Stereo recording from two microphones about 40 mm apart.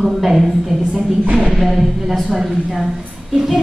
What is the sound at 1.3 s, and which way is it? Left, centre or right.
Speech, centre.